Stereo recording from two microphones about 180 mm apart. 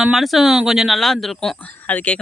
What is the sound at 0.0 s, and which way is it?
Speech, centre (ahead or behind).